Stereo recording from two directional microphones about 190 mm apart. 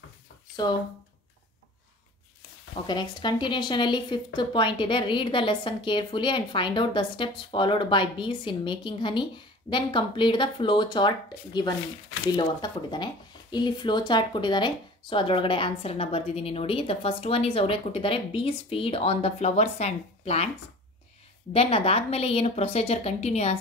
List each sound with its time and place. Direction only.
0.6 s a woman's voice: 20° left (ahead or behind)
2.9 s a woman's voice: 25° left (ahead or behind)
21.5 s a woman's voice: 30° left (ahead or behind)